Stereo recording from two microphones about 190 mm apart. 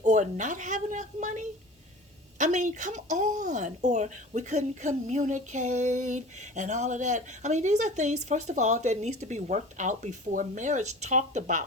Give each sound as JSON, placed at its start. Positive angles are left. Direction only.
{"t": 0.0, "sound": "speech", "side_deg": -40}